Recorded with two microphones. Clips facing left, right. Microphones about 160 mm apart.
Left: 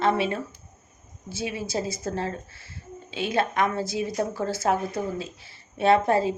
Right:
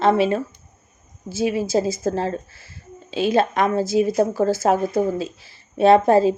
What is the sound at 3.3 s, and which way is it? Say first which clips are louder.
Speech: right 5 dB; 20° right (ahead or behind).